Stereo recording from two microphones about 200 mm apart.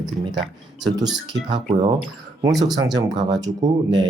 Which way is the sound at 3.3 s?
20° right (ahead or behind).